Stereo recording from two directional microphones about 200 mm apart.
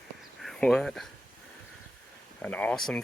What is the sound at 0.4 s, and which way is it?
Speech, centre (ahead or behind).